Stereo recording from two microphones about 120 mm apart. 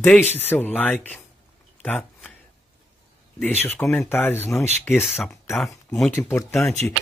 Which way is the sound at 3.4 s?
15° left (ahead or behind).